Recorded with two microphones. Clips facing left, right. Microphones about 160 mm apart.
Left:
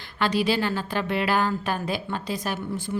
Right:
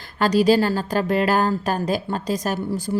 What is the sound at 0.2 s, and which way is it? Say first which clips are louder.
A woman's voice: right 7 dB; 40° right (ahead or behind).